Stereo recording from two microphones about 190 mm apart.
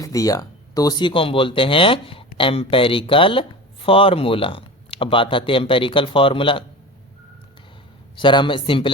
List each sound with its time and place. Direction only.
0.0 s speech: 20° left (ahead or behind)
8.1 s speech: 25° left (ahead or behind)